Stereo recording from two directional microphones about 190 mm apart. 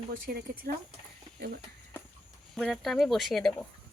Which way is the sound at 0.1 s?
50° right (ahead or behind).